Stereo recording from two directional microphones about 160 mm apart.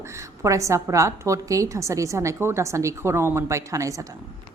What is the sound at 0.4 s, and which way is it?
A woman's voice, 20° right (ahead or behind).